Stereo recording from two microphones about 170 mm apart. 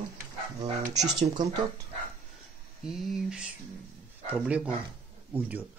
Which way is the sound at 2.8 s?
Centre (ahead or behind).